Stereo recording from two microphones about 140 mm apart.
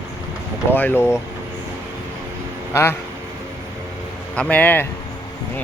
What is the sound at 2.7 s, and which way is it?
Speech, 20° left (ahead or behind).